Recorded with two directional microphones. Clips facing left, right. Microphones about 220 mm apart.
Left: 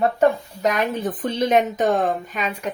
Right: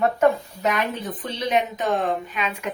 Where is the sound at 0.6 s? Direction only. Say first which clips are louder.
Left 3 dB; 45° left (ahead or behind).